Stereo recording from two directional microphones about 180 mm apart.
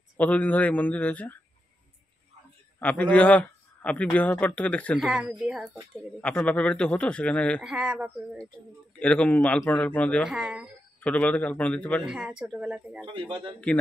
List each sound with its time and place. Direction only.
0.2 s a man's voice: 10° left (ahead or behind)
2.8 s a man's voice: 10° left (ahead or behind)
4.9 s speech: 5° right (ahead or behind)
6.2 s a man's voice: 5° left (ahead or behind)
7.7 s speech: 5° right (ahead or behind)
9.0 s a man's voice: 5° left (ahead or behind)
10.3 s speech: 5° right (ahead or behind)
11.0 s a man's voice: 5° left (ahead or behind)
12.2 s speech: 5° right (ahead or behind)
13.0 s speech: 30° right (ahead or behind)